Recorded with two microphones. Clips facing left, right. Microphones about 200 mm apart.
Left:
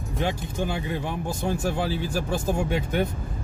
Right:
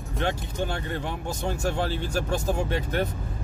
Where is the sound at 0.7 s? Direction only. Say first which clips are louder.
Left 2 dB; 10° left (ahead or behind).